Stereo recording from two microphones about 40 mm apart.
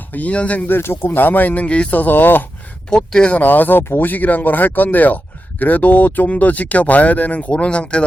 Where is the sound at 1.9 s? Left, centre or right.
Left.